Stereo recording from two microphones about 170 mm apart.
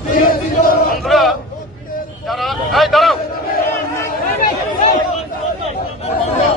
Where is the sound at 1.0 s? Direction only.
Centre (ahead or behind).